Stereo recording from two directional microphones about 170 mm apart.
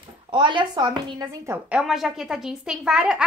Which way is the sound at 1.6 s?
5° right (ahead or behind).